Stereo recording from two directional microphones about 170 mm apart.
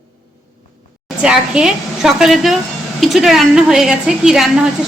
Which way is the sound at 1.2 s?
5° right (ahead or behind).